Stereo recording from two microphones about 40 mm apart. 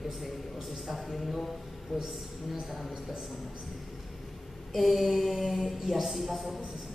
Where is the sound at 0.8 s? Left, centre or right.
Centre.